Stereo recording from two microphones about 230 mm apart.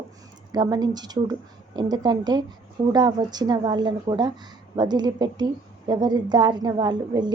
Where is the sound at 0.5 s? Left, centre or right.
Centre.